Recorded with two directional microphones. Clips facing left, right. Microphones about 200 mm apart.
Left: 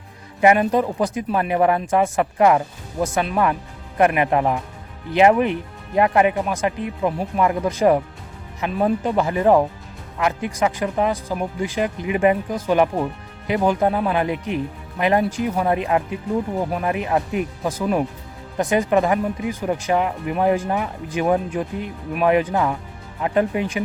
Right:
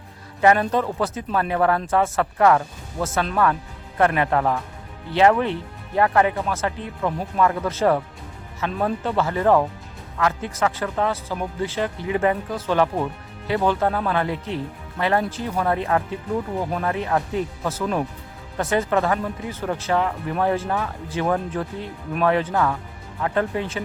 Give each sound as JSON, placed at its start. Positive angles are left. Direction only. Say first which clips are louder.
{"t": 0.4, "sound": "speech", "louder": "left 2 dB", "side_deg": 15}